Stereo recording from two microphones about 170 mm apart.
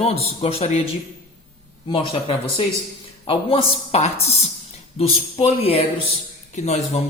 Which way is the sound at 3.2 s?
35° left (ahead or behind).